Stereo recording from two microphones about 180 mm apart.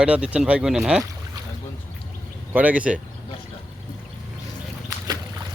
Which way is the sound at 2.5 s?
10° right (ahead or behind).